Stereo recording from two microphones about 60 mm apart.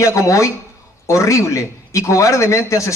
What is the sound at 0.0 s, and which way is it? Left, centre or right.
A man's voice, left.